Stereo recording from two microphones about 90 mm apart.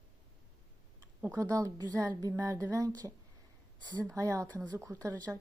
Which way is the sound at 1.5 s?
40° right (ahead or behind).